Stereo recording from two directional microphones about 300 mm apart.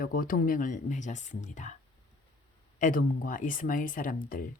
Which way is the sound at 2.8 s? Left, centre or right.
Left.